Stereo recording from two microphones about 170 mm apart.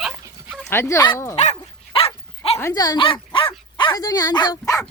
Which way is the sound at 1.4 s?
40° left (ahead or behind).